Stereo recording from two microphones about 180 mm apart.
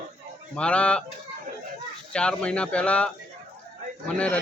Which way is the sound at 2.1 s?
5° left (ahead or behind).